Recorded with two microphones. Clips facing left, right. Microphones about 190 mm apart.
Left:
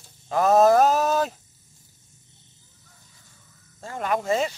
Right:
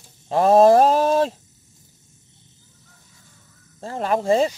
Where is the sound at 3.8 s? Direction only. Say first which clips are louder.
Right 4 dB; 30° right (ahead or behind).